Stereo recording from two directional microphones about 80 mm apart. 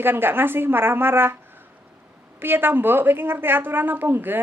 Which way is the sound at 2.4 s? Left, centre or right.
Right.